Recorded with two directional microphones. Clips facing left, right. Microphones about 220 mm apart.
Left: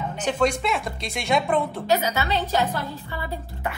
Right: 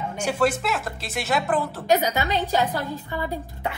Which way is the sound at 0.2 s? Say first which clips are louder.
Even; 5° right (ahead or behind).